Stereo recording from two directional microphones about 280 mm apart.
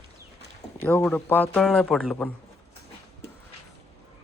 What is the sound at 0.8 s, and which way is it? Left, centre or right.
A man's voice, centre.